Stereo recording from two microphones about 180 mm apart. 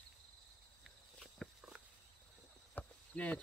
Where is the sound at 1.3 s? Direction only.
Centre (ahead or behind).